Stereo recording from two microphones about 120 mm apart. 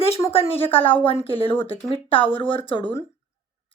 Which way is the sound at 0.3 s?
55° left (ahead or behind).